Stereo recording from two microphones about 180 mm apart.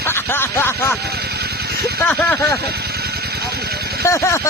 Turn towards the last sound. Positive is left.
turn(degrees=15)  # may be behind; listen again after turning